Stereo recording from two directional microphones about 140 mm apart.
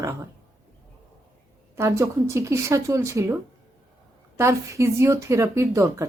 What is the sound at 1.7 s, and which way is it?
Speech, 20° right (ahead or behind).